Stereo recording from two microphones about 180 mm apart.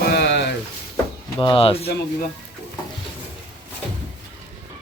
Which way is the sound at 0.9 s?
25° left (ahead or behind).